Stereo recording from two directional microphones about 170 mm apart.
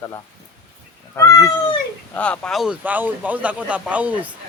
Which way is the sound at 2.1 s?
5° left (ahead or behind).